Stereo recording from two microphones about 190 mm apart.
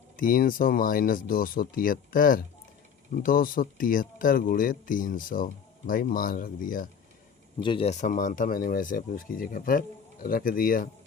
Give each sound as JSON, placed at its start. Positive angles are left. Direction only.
{"t": 0.2, "sound": "speech", "side_deg": 45}
{"t": 7.6, "sound": "speech", "side_deg": 25}